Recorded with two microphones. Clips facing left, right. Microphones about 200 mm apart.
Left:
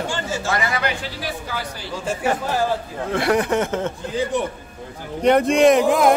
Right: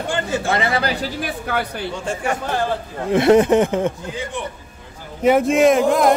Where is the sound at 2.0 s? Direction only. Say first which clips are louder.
Left 3 dB; 5° left (ahead or behind).